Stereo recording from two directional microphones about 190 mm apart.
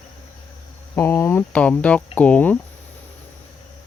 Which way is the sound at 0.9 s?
15° left (ahead or behind).